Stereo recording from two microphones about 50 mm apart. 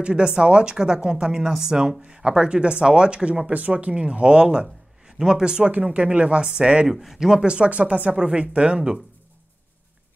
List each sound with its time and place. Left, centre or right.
0.0 s speech: centre
6.9 s speech: centre